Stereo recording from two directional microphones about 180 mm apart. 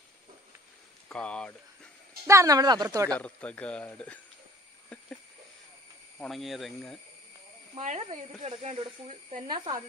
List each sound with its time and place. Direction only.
1.0 s speech: 5° left (ahead or behind)
2.2 s speech: 15° right (ahead or behind)
3.1 s speech: 5° left (ahead or behind)
6.1 s speech: centre (ahead or behind)
7.7 s speech: 35° right (ahead or behind)